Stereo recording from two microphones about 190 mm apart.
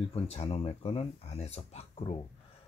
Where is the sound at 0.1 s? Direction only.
30° left (ahead or behind).